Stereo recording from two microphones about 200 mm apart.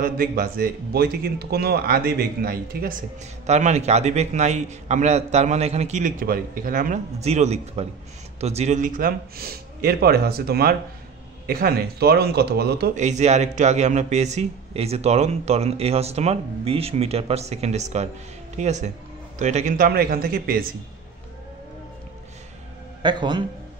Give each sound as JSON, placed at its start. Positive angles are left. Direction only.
{"t": 0.0, "sound": "speech", "side_deg": -45}
{"t": 3.4, "sound": "a man's voice", "side_deg": -35}
{"t": 12.9, "sound": "a man's voice", "side_deg": -35}
{"t": 23.0, "sound": "a man's voice", "side_deg": -25}